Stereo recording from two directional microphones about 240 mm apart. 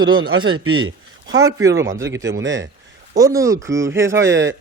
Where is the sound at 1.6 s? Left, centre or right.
Centre.